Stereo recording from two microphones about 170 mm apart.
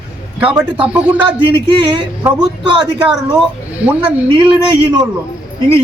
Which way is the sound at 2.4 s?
30° right (ahead or behind).